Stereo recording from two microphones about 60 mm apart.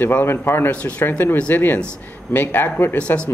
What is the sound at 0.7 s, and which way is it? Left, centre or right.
A man's voice, left.